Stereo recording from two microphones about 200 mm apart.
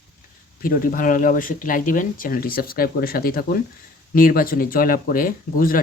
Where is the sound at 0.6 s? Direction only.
45° left (ahead or behind).